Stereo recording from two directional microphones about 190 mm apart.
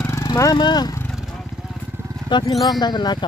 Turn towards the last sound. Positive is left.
turn(degrees=20)  # may be behind; listen again after turning